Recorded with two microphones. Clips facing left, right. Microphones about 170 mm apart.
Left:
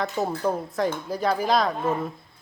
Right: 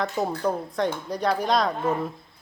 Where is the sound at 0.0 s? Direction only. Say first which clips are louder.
Even; centre (ahead or behind).